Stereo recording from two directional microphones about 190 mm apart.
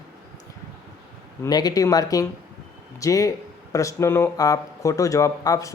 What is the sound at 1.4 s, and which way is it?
Speech, 20° left (ahead or behind).